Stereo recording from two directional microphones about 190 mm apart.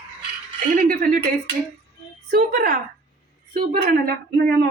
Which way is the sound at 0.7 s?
50° right (ahead or behind).